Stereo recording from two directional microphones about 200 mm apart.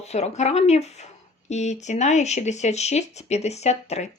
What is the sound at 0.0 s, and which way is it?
A woman's voice, 35° left (ahead or behind).